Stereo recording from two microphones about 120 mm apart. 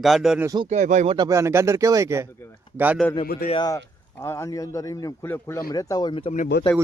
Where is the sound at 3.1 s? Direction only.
45° left (ahead or behind).